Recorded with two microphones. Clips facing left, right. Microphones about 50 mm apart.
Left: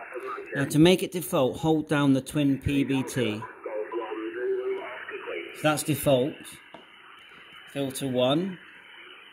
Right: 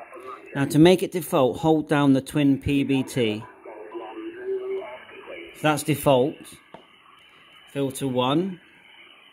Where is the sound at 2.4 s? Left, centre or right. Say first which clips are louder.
Right 4 dB; right.